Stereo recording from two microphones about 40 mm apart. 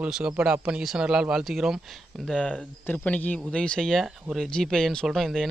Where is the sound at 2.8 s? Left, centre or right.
Left.